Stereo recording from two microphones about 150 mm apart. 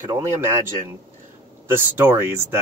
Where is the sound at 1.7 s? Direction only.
15° right (ahead or behind).